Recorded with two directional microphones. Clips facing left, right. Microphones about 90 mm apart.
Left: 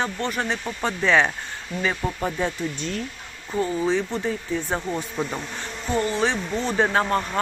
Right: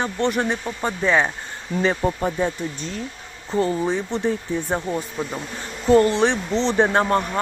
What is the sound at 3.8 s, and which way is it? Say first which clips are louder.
Speech: right 1 dB; 15° right (ahead or behind).